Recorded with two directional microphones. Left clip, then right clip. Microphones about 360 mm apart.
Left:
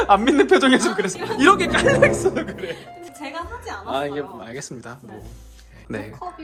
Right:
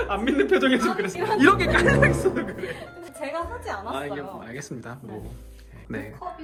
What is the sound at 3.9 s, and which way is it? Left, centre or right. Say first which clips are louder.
Speech: left 6 dB; centre.